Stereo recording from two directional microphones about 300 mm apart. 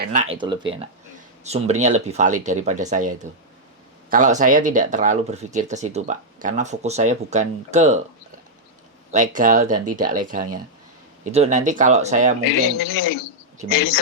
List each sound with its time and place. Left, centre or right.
0.0 s speech: right
9.1 s speech: right
12.7 s speech: left